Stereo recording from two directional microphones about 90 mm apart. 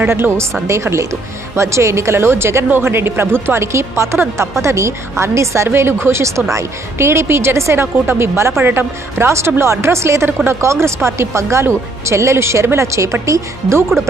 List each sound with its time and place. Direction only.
0.0 s a woman's voice: 25° right (ahead or behind)